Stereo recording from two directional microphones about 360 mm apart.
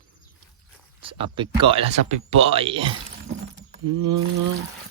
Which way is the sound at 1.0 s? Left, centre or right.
Centre.